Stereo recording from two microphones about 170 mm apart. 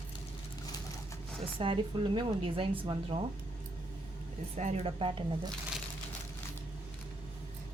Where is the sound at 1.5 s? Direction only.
30° right (ahead or behind).